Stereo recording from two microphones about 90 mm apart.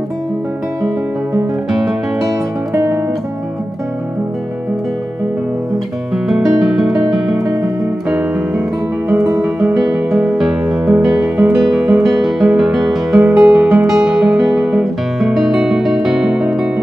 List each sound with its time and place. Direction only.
2.2 s music: 30° right (ahead or behind)
6.2 s music: 5° right (ahead or behind)
9.1 s music: 40° right (ahead or behind)
9.4 s music: 5° right (ahead or behind)